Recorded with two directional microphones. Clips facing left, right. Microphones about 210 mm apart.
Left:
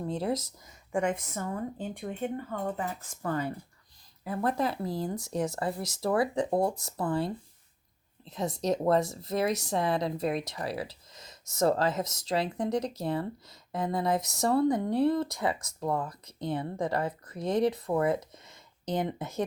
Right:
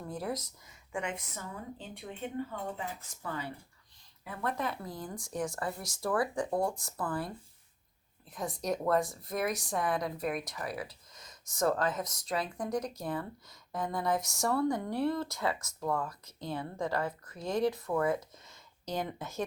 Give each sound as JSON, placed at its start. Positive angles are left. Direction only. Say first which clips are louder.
{"t": 0.0, "sound": "speech", "louder": "left 6 dB", "side_deg": 25}
{"t": 0.9, "sound": "a woman's voice", "louder": "left 8 dB", "side_deg": 45}
{"t": 5.5, "sound": "speech", "louder": "left 5 dB", "side_deg": 20}